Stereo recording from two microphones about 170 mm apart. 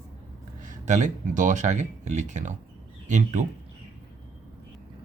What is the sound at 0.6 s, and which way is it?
Speech, 45° right (ahead or behind).